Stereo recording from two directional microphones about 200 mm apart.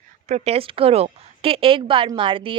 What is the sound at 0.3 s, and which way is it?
Speech, 35° right (ahead or behind).